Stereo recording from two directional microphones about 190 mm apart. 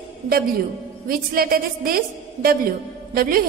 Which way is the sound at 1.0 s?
50° right (ahead or behind).